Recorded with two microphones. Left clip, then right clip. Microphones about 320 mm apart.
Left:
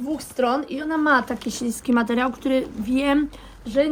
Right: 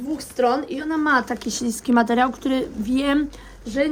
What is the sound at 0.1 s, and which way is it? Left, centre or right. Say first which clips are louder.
Speech: right 2 dB; centre.